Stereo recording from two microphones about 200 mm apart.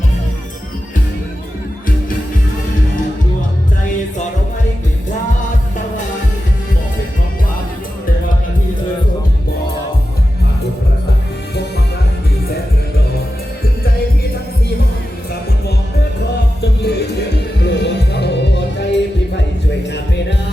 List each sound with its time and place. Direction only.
16.8 s music: 55° left (ahead or behind)